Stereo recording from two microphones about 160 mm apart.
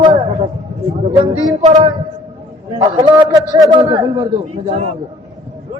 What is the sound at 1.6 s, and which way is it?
Speech, 45° right (ahead or behind).